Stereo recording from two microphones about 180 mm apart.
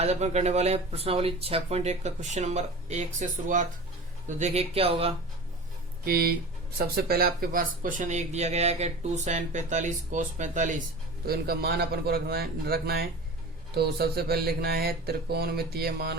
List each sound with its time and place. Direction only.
0.0 s speech: 40° right (ahead or behind)
6.1 s speech: 55° right (ahead or behind)
11.3 s speech: 60° right (ahead or behind)